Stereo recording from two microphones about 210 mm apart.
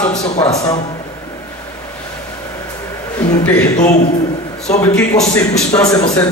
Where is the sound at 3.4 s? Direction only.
10° left (ahead or behind).